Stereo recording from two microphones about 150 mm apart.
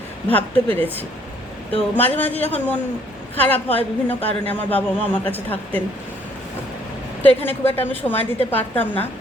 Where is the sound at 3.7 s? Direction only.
40° left (ahead or behind).